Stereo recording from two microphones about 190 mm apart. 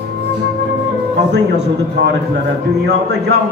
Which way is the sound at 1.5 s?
60° right (ahead or behind).